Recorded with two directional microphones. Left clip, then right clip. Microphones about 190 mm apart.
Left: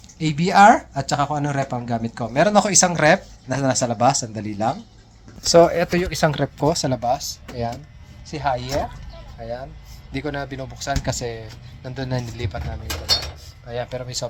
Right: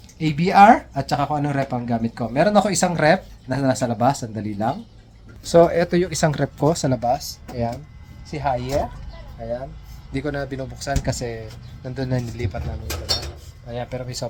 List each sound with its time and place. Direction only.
0.2 s speech: centre (ahead or behind)
6.6 s speech: 20° right (ahead or behind)
10.1 s speech: 10° right (ahead or behind)
13.9 s speech: 20° right (ahead or behind)